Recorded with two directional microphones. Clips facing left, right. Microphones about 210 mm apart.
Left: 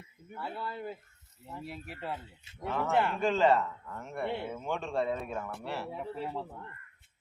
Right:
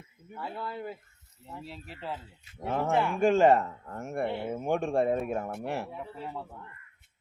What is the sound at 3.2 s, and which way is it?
Speech, 45° right (ahead or behind).